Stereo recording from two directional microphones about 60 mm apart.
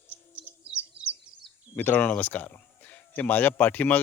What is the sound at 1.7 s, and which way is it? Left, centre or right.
Speech, left.